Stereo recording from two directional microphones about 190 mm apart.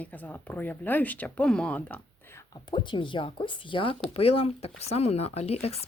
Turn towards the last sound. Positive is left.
turn(degrees=35)  # may be behind; listen again after turning